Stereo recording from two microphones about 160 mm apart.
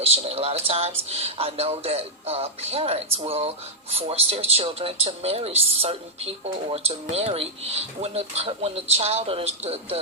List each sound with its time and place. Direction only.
0.0 s speech: 40° right (ahead or behind)